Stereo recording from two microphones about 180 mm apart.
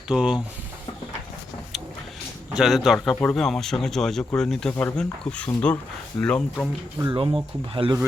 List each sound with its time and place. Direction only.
0.1 s speech: 5° right (ahead or behind)
2.5 s speech: centre (ahead or behind)
7.1 s speech: 30° right (ahead or behind)